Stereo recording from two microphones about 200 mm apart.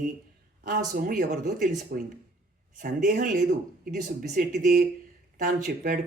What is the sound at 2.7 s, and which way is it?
Speech, 40° right (ahead or behind).